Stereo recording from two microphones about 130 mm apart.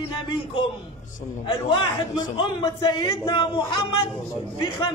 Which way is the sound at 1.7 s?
40° left (ahead or behind).